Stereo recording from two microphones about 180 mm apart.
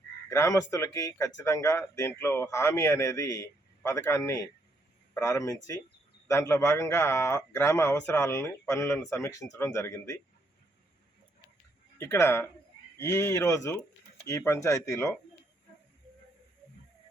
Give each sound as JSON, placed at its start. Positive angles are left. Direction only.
{"t": 0.3, "sound": "a man's voice", "side_deg": 15}
{"t": 11.9, "sound": "a man's voice", "side_deg": 15}